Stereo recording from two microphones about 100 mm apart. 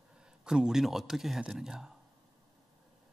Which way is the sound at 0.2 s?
10° right (ahead or behind).